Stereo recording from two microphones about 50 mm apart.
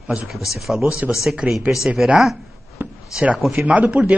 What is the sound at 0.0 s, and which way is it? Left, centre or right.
Speech, right.